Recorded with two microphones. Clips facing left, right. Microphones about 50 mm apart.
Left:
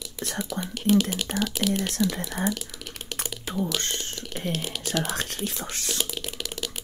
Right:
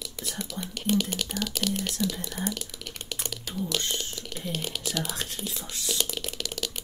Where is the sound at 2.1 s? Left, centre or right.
Left.